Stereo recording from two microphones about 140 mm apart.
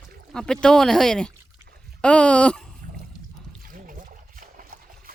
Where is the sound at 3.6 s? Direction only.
80° right.